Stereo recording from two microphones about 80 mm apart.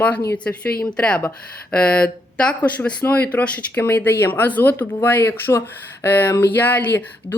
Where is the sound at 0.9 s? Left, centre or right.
Centre.